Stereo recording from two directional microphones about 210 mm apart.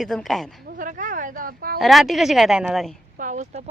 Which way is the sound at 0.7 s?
40° right (ahead or behind).